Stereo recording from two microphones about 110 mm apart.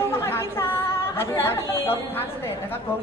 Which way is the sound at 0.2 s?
25° left (ahead or behind).